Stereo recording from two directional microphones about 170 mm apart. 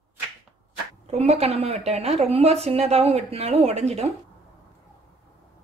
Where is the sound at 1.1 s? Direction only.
40° right (ahead or behind).